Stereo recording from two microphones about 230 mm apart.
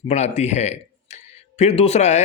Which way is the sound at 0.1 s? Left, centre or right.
Left.